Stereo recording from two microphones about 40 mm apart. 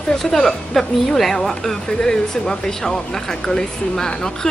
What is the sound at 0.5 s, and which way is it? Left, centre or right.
Speech, centre.